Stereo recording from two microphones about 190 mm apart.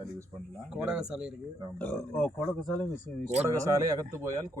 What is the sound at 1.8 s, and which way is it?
A man's voice, 10° left (ahead or behind).